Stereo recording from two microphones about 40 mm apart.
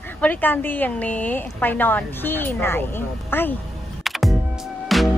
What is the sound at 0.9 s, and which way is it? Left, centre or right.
Speech, left.